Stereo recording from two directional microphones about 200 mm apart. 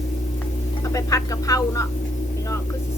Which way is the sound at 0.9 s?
15° left (ahead or behind).